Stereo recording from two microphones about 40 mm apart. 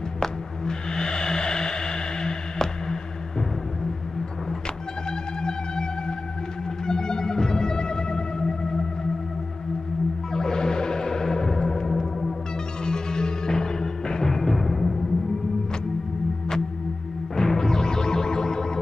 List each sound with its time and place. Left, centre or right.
0.2 s music: centre
5.4 s music: centre
10.3 s music: centre
12.8 s music: centre
17.4 s music: centre